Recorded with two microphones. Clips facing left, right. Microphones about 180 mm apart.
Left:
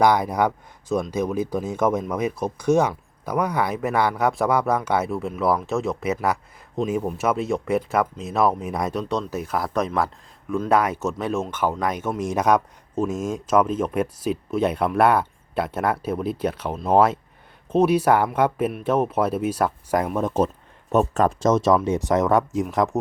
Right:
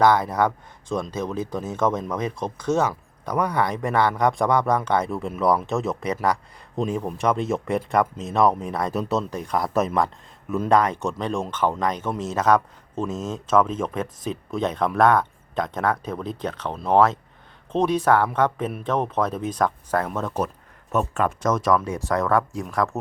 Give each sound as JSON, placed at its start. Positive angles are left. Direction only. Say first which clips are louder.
{"t": 0.0, "sound": "speech", "louder": "even", "side_deg": 15}
{"t": 8.9, "sound": "speech", "louder": "right 1 dB", "side_deg": -5}
{"t": 20.9, "sound": "speech", "louder": "left 4 dB", "side_deg": 40}